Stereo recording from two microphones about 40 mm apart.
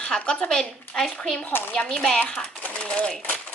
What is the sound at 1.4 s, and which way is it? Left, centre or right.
Speech, left.